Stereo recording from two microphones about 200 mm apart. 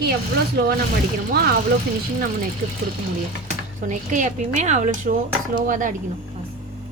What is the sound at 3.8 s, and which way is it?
A woman's voice, 40° right (ahead or behind).